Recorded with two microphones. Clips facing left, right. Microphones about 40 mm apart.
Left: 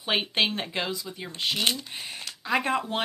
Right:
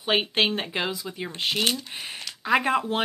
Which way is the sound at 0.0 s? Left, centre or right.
Centre.